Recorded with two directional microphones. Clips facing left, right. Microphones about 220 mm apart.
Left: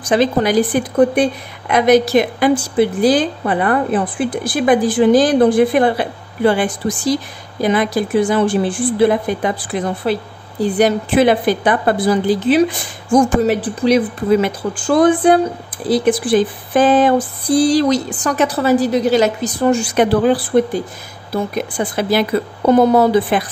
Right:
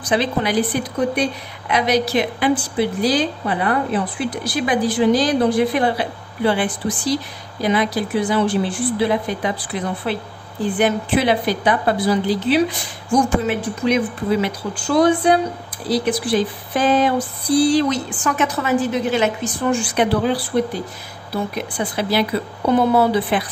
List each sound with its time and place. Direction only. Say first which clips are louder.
0.0 s a woman's voice: left 5 dB; 45° left (ahead or behind)
10.6 s a woman's voice: left 4 dB; 40° left (ahead or behind)
14.4 s a woman's voice: left 4 dB; 50° left (ahead or behind)